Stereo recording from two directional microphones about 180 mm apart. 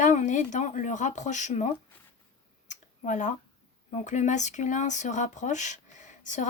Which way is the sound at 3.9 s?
40° left (ahead or behind).